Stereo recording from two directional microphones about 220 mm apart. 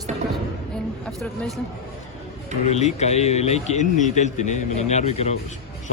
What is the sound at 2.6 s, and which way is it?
Speech, 30° left (ahead or behind).